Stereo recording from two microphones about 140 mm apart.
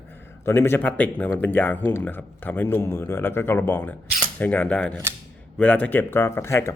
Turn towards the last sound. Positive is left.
turn(degrees=20)  # may be behind; listen again after turning